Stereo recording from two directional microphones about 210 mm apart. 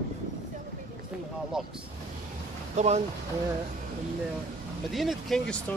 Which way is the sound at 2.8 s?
35° right (ahead or behind).